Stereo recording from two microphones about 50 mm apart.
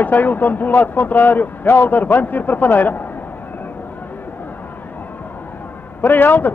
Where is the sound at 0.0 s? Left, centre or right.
Left.